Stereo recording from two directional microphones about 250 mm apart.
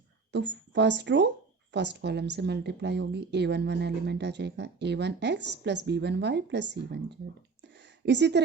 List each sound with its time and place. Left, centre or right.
0.3 s a woman's voice: right
8.0 s a woman's voice: right